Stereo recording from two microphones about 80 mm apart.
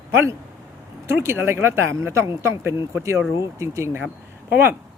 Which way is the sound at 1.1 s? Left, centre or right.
Right.